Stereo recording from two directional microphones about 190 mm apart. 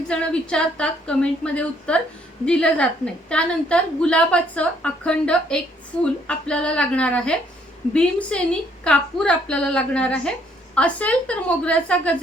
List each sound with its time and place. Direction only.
0.1 s a woman's voice: 5° left (ahead or behind)